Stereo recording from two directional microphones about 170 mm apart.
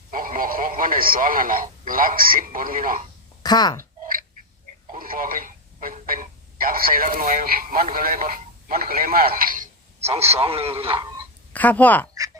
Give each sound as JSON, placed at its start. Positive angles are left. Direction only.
{"t": 0.1, "sound": "speech", "side_deg": -55}
{"t": 3.4, "sound": "speech", "side_deg": 25}
{"t": 4.0, "sound": "a sound", "side_deg": -50}
{"t": 4.9, "sound": "speech", "side_deg": -55}
{"t": 10.0, "sound": "a man's voice", "side_deg": -35}
{"t": 11.5, "sound": "a woman's voice", "side_deg": 10}